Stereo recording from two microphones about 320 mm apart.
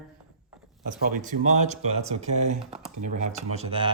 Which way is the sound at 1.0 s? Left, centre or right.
Right.